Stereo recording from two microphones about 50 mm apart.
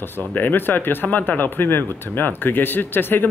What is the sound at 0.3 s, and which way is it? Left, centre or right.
Speech, left.